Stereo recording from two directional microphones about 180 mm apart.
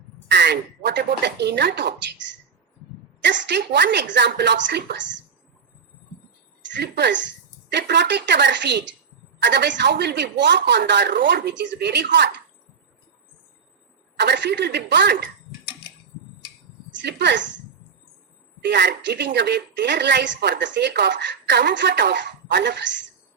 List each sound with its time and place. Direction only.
0.3 s a woman's voice: 70° right (ahead or behind)
6.7 s a woman's voice: 70° right (ahead or behind)
14.2 s a woman's voice: 75° right (ahead or behind)
17.0 s a woman's voice: 70° right (ahead or behind)
18.6 s a woman's voice: 70° right (ahead or behind)